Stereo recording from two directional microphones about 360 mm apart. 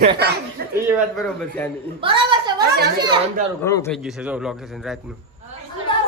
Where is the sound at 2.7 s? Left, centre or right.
Right.